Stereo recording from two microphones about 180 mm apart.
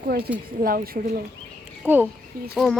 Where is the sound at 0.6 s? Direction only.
55° right (ahead or behind).